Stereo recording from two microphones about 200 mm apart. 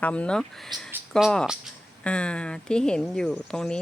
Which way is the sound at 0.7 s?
20° right (ahead or behind).